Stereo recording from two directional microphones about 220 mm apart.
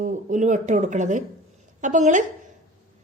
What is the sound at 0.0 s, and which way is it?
A woman's voice, 35° right (ahead or behind).